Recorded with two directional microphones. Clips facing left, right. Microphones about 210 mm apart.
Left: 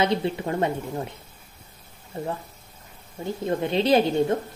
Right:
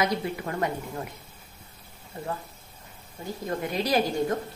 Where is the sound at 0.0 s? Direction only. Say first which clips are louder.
Left 4 dB; 25° left (ahead or behind).